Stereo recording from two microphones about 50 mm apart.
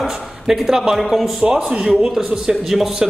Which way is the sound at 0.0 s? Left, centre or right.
Centre.